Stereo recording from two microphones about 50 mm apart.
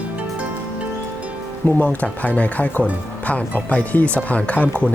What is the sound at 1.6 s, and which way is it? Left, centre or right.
Speech, left.